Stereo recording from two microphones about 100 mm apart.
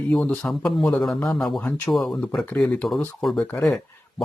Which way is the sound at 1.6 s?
15° left (ahead or behind).